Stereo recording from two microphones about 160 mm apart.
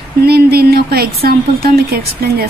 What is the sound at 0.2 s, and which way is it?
Speech, 75° right (ahead or behind).